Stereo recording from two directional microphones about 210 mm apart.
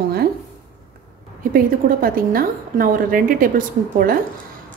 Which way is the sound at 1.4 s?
45° right (ahead or behind).